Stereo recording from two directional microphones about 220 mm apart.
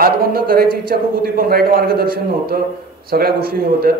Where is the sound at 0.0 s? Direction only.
40° right (ahead or behind).